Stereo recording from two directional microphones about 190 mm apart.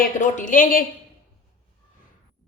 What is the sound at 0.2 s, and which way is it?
Speech, 40° left (ahead or behind).